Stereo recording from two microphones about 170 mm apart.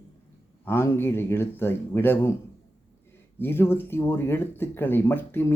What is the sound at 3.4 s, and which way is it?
Speech, 15° left (ahead or behind).